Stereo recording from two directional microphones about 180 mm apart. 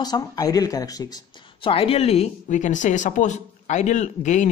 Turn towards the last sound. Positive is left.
turn(degrees=40)  # may be behind; listen again after turning